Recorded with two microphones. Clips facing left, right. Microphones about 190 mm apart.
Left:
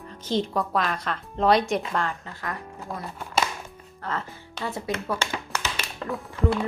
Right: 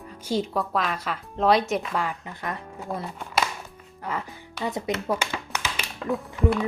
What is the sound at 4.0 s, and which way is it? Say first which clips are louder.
Speech: even; 10° right (ahead or behind).